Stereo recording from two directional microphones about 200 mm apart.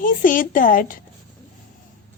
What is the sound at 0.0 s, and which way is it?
Speech, 45° left (ahead or behind).